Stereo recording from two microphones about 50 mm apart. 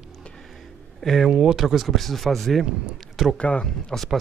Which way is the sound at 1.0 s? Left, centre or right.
Centre.